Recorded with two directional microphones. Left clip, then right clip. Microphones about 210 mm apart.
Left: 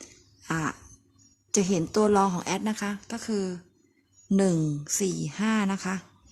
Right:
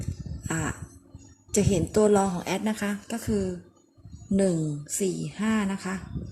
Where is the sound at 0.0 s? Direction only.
25° left (ahead or behind).